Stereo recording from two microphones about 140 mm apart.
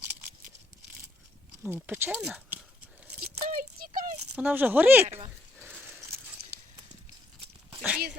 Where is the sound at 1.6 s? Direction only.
15° right (ahead or behind).